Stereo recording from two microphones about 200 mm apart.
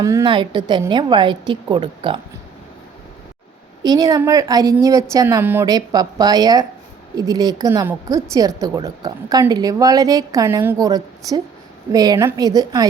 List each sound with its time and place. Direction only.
0.0 s a woman's voice: 15° right (ahead or behind)
3.8 s a woman's voice: 20° right (ahead or behind)